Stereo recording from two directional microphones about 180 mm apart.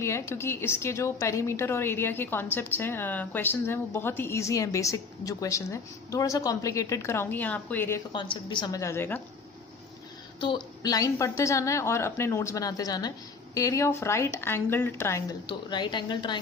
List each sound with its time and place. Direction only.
0.0 s a woman's voice: 15° left (ahead or behind)
8.1 s a woman's voice: 25° left (ahead or behind)
10.4 s a woman's voice: 25° left (ahead or behind)